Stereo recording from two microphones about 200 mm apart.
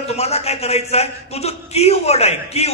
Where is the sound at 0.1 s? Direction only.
30° left (ahead or behind).